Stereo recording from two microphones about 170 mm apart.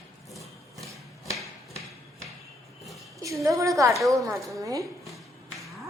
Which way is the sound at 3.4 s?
20° right (ahead or behind).